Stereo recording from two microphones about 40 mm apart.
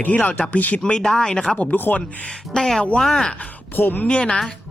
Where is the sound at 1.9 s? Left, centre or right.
Left.